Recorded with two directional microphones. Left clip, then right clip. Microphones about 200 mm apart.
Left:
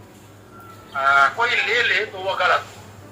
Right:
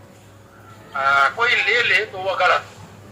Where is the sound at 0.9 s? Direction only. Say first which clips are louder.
Left 1 dB; 15° right (ahead or behind).